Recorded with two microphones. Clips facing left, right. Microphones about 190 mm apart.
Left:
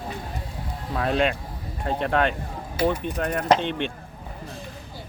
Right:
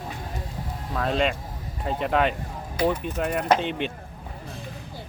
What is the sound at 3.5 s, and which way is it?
Speech, 5° right (ahead or behind).